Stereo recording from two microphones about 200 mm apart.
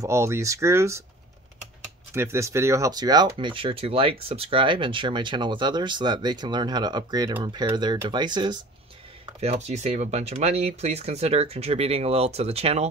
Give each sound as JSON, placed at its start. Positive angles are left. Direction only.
{"t": 0.0, "sound": "speech", "side_deg": -15}
{"t": 2.1, "sound": "speech", "side_deg": -15}